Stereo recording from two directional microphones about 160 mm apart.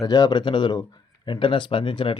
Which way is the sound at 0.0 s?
25° left (ahead or behind).